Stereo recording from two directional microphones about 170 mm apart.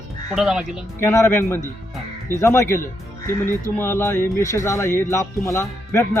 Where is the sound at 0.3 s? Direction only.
5° right (ahead or behind).